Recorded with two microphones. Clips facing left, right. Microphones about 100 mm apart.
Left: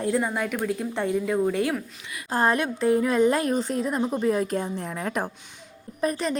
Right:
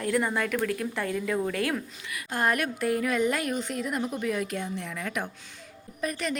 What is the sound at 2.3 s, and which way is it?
Speech, 30° left (ahead or behind).